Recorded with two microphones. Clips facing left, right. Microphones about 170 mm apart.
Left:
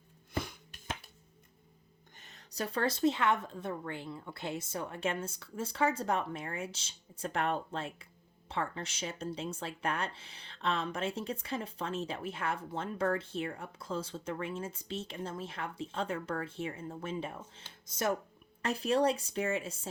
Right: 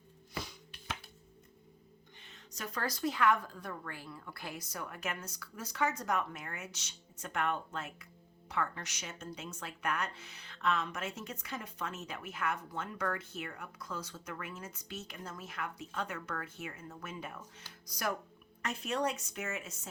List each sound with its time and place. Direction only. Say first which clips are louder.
0.3 s music: left 5 dB; 50° left (ahead or behind)
2.1 s speech: left 9 dB; 40° left (ahead or behind)